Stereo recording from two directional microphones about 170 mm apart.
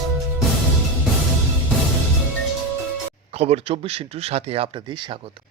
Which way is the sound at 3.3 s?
35° right (ahead or behind).